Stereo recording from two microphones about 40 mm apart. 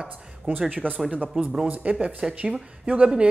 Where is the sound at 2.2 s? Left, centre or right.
Right.